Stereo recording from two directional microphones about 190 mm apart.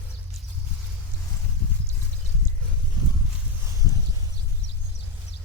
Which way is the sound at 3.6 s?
20° right (ahead or behind).